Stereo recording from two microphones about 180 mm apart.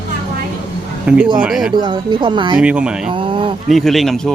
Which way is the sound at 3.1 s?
30° right (ahead or behind).